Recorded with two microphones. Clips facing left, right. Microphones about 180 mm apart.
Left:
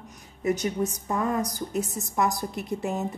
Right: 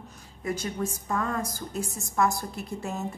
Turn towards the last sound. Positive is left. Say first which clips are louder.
# left 4 dB
turn(degrees=20)  # may be behind; listen again after turning